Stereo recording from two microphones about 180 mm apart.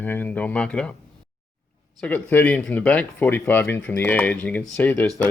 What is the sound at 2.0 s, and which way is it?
Speech, 10° left (ahead or behind).